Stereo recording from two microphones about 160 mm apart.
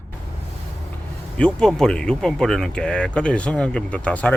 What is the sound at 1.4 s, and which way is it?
Speech, 5° left (ahead or behind).